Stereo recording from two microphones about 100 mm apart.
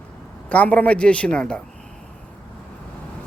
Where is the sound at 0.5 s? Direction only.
15° left (ahead or behind).